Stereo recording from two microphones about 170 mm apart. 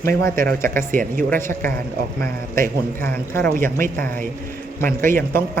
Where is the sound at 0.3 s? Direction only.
60° right (ahead or behind).